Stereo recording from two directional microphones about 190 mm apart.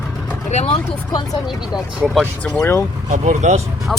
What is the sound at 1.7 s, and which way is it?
Speech, 5° right (ahead or behind).